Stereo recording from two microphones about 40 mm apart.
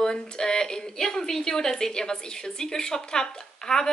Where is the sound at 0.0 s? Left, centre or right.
Centre.